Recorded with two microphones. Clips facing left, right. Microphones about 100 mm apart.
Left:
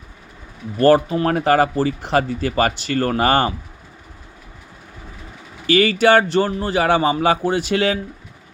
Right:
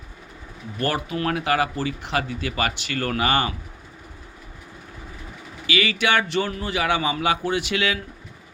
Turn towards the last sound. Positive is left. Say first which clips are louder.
# left 5 dB
turn(degrees=40)  # may be behind; listen again after turning